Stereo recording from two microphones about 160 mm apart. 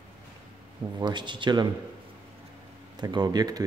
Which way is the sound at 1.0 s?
30° right (ahead or behind).